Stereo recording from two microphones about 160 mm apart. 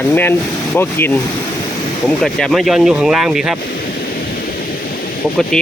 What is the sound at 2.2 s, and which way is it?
Speech, centre (ahead or behind).